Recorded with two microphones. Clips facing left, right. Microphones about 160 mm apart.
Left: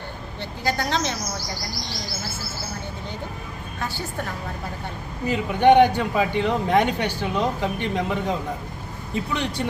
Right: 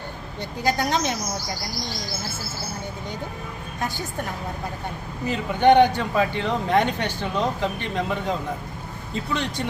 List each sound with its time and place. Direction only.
0.6 s a woman's voice: 15° right (ahead or behind)
3.8 s a woman's voice: 15° right (ahead or behind)
5.3 s a man's voice: 10° left (ahead or behind)